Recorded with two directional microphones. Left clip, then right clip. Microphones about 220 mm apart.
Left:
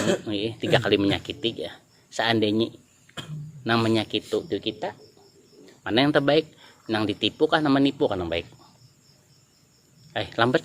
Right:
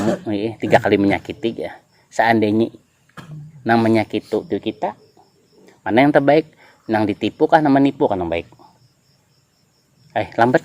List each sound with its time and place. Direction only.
0.4 s speech: 30° right (ahead or behind)
3.6 s speech: 25° right (ahead or behind)
10.1 s speech: 25° right (ahead or behind)